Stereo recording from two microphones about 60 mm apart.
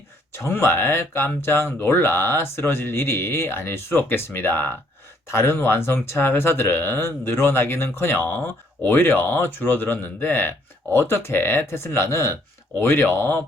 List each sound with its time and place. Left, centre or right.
0.3 s speech: left